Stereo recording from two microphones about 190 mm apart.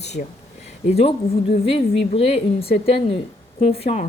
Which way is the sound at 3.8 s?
35° left (ahead or behind).